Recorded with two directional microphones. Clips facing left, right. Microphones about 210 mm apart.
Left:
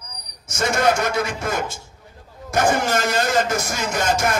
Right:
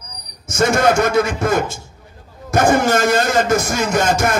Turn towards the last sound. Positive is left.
turn(degrees=-50)  # may be behind; listen again after turning